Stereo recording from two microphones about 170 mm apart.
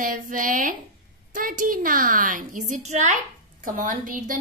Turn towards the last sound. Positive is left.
turn(degrees=-50)  # may be behind; listen again after turning